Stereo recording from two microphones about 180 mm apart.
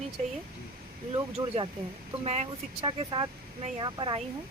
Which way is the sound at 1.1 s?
25° right (ahead or behind).